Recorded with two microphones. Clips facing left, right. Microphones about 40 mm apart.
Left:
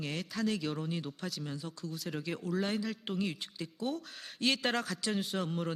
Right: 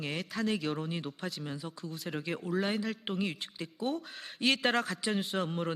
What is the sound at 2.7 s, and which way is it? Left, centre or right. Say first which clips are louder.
A man's voice: right 1 dB; centre.